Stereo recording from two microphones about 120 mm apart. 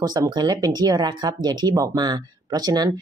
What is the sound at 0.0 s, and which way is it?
Speech, 35° right (ahead or behind).